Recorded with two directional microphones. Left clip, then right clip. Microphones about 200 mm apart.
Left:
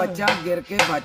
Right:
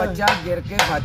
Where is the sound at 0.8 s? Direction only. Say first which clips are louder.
Right 1 dB; 55° right (ahead or behind).